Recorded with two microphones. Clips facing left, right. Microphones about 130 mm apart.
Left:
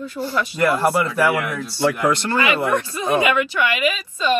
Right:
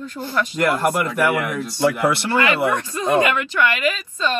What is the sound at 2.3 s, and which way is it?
A woman's voice, 15° left (ahead or behind).